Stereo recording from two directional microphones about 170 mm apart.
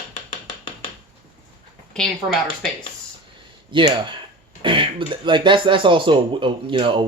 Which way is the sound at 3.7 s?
30° right (ahead or behind).